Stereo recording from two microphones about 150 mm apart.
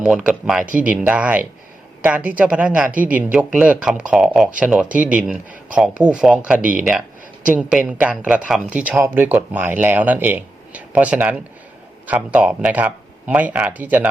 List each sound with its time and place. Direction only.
0.0 s a woman's voice: 5° right (ahead or behind)
6.6 s speech: 65° right (ahead or behind)
7.4 s speech: 10° right (ahead or behind)